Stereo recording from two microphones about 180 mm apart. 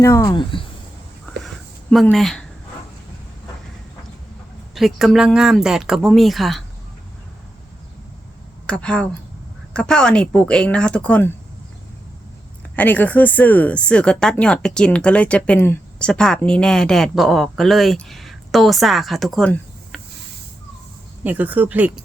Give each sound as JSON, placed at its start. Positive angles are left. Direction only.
{"t": 0.0, "sound": "speech", "side_deg": 15}
{"t": 1.9, "sound": "speech", "side_deg": 0}
{"t": 4.7, "sound": "speech", "side_deg": 0}
{"t": 8.6, "sound": "speech", "side_deg": 5}
{"t": 12.7, "sound": "speech", "side_deg": 10}
{"t": 21.2, "sound": "speech", "side_deg": -10}